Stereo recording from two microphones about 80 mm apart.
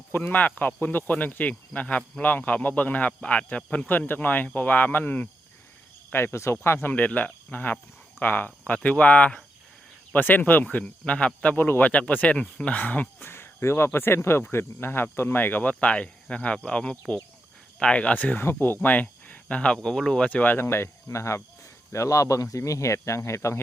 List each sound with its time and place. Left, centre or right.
0.2 s speech: centre
11.5 s speech: left